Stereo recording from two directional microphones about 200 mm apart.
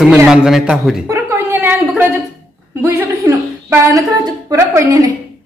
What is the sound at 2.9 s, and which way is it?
A woman's voice, 10° right (ahead or behind).